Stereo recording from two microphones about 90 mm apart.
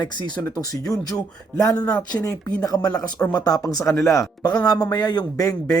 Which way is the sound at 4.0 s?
30° left (ahead or behind).